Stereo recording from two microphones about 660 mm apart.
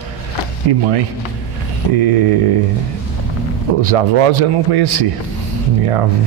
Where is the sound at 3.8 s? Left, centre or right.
Right.